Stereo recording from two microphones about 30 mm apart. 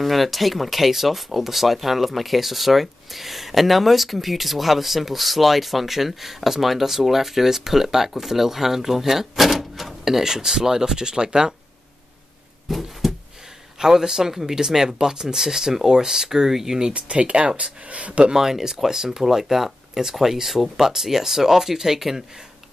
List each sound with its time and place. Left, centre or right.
0.0 s speech: centre; by 11.5 s right
12.6 s a sound: centre
13.7 s speech: centre
16.9 s speech: right
18.3 s speech: centre